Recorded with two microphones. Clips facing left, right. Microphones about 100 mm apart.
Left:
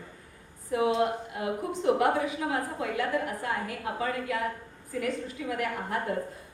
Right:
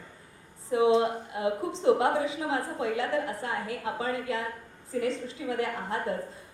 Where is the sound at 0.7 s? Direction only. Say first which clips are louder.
Right 3 dB; 25° right (ahead or behind).